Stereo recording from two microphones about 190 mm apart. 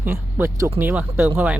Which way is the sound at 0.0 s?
10° right (ahead or behind).